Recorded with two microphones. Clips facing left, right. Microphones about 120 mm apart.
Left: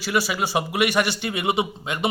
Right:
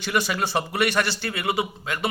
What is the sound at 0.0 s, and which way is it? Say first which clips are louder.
A man's voice: left 1 dB; 5° left (ahead or behind).